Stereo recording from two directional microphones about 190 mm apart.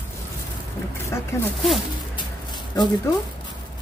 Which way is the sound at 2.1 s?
20° left (ahead or behind).